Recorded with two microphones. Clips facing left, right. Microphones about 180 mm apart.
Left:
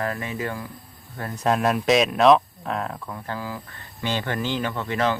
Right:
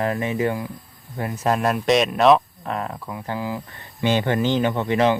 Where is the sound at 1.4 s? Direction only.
Centre (ahead or behind).